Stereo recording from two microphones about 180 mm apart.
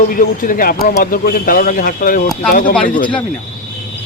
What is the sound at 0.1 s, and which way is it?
Speech, 50° left (ahead or behind).